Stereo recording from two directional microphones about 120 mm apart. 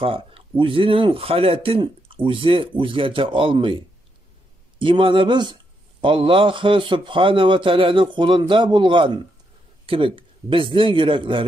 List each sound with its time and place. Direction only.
0.0 s speech: 50° right (ahead or behind)